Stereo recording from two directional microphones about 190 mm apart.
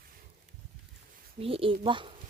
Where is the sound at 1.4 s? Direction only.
30° right (ahead or behind).